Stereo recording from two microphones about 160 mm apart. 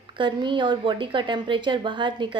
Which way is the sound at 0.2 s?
30° right (ahead or behind).